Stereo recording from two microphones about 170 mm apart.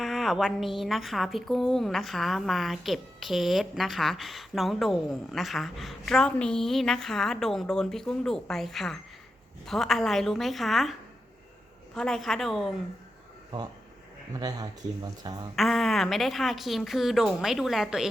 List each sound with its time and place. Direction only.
0.0 s a woman's voice: centre (ahead or behind)
11.9 s a woman's voice: centre (ahead or behind)
14.3 s speech: 20° right (ahead or behind)
15.5 s a woman's voice: centre (ahead or behind)